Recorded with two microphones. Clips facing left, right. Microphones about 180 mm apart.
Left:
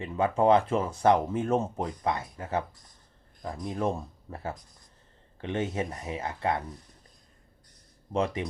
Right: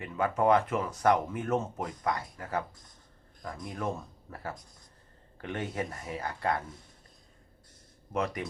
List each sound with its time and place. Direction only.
0.0 s speech: 25° left (ahead or behind)
3.7 s speech: 30° left (ahead or behind)
8.1 s speech: 25° left (ahead or behind)